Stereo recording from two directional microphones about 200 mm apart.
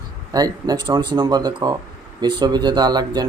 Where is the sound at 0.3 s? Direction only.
20° right (ahead or behind).